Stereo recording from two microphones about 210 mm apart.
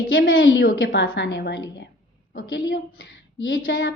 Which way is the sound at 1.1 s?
55° left (ahead or behind).